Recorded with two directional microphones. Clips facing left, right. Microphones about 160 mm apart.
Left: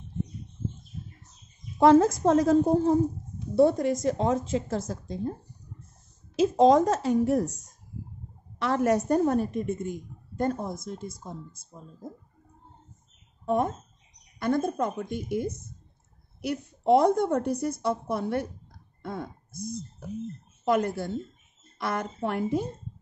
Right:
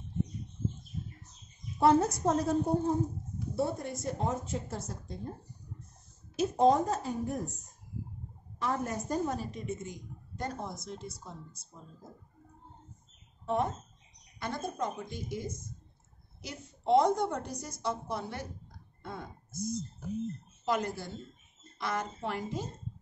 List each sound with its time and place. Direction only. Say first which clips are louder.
1.8 s a woman's voice: left 7 dB; 90° left
6.3 s a woman's voice: left 6 dB; 90° left; by 12.1 s 50° left (ahead or behind)
13.5 s a woman's voice: left 5 dB; 50° left (ahead or behind)
20.6 s a woman's voice: left 7 dB; 55° left (ahead or behind)